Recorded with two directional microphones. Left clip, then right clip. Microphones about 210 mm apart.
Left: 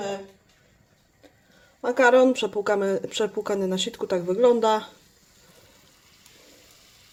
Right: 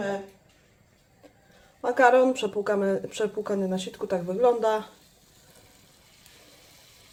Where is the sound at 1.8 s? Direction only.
20° left (ahead or behind).